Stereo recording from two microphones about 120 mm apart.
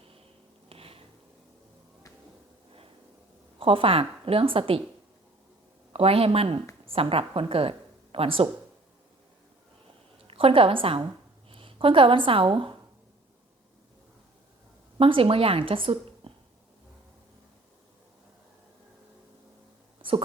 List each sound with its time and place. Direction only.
0.7 s a sound: 50° right (ahead or behind)
3.6 s a woman's voice: 50° right (ahead or behind)
5.9 s a woman's voice: 55° right (ahead or behind)
10.2 s a woman's voice: 50° right (ahead or behind)
14.9 s a woman's voice: 50° right (ahead or behind)
20.0 s a sound: 45° right (ahead or behind)